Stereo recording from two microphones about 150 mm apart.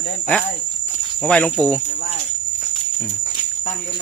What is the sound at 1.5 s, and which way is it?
Jingle bell, 5° left (ahead or behind).